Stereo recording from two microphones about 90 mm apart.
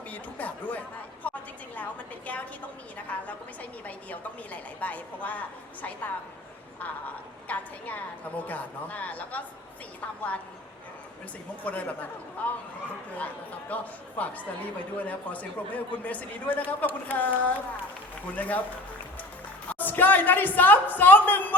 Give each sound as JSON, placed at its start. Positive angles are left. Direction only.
{"t": 0.1, "sound": "a sound", "side_deg": 15}
{"t": 3.1, "sound": "a woman's voice", "side_deg": 15}
{"t": 7.4, "sound": "a woman's voice", "side_deg": 15}
{"t": 11.6, "sound": "a woman's voice", "side_deg": 15}
{"t": 19.6, "sound": "a woman's voice", "side_deg": 20}